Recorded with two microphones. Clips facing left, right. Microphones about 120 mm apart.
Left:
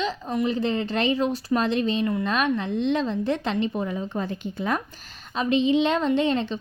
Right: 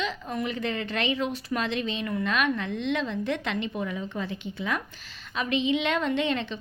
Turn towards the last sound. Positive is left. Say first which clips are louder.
# left 5 dB
turn(degrees=35)  # may be behind; listen again after turning